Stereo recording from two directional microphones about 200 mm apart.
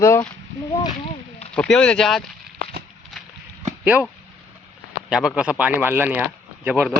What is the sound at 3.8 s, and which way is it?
Speech, 5° right (ahead or behind).